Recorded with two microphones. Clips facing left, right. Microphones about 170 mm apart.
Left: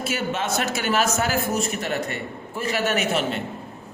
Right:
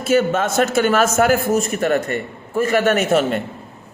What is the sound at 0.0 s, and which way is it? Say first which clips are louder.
A man's voice: right 9 dB; 50° right (ahead or behind).